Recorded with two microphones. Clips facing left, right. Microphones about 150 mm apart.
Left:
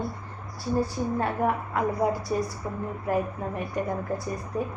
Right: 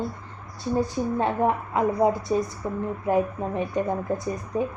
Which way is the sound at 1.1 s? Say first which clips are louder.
Right 3 dB; 25° right (ahead or behind).